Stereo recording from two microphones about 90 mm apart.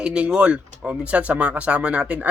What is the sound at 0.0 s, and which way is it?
A man's voice, 10° right (ahead or behind).